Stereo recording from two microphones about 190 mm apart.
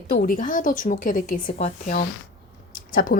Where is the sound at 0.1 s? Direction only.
50° left (ahead or behind).